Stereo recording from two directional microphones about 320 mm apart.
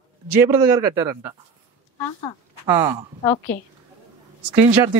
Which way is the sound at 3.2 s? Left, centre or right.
Centre.